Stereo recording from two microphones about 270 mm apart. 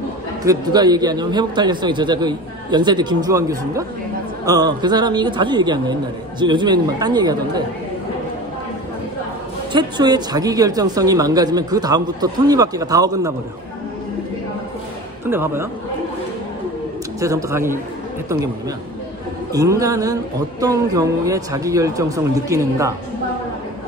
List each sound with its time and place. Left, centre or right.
0.5 s speech: centre
9.7 s speech: centre
15.2 s speech: centre
17.2 s speech: centre
19.5 s speech: centre